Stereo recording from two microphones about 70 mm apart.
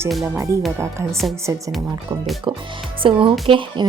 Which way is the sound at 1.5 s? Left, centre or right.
Right.